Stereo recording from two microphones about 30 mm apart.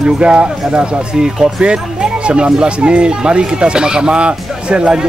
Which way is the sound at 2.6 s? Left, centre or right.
Right.